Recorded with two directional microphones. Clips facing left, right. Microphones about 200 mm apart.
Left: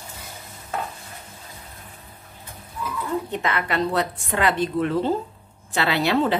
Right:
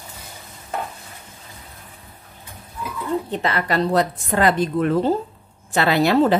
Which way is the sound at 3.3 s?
35° right (ahead or behind).